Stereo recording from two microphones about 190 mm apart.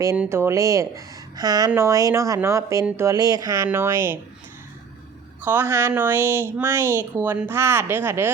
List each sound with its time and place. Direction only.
0.2 s speech: 15° right (ahead or behind)
5.4 s speech: 10° right (ahead or behind)